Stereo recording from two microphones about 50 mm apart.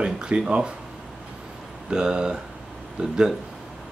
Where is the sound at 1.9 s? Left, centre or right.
Centre.